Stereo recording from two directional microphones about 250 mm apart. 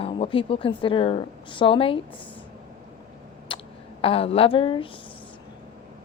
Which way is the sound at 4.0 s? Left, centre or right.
Left.